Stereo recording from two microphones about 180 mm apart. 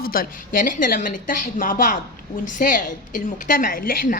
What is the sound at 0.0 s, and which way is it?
A woman's voice, 55° left (ahead or behind).